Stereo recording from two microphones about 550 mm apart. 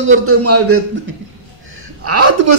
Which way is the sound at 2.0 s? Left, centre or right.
Right.